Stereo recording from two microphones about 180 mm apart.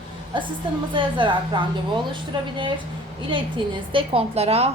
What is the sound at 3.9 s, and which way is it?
Speech, 30° right (ahead or behind).